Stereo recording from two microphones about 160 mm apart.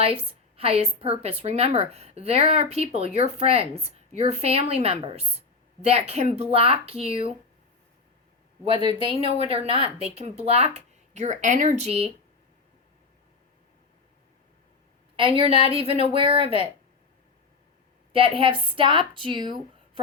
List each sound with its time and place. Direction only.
0.0 s a woman's voice: 35° right (ahead or behind)
8.6 s a woman's voice: 35° right (ahead or behind)
15.4 s a woman's voice: 35° right (ahead or behind)
18.1 s a woman's voice: 35° right (ahead or behind)